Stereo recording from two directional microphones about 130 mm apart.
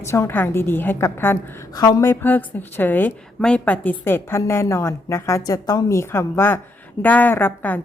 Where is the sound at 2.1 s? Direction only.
15° left (ahead or behind).